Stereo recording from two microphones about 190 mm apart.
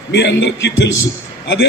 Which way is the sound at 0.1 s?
65° left (ahead or behind).